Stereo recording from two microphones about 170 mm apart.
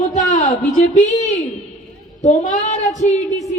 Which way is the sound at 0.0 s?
45° left (ahead or behind).